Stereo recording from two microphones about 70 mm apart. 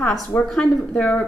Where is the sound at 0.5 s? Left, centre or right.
Centre.